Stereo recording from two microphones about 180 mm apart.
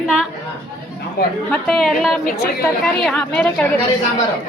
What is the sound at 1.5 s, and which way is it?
A woman's voice, centre (ahead or behind).